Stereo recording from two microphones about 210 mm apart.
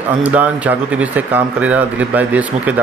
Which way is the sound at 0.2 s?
5° right (ahead or behind).